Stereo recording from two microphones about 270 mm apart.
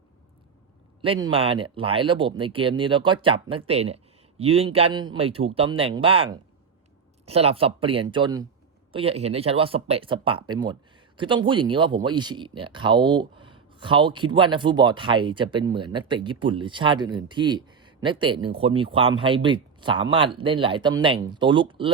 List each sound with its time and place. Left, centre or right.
1.0 s speech: centre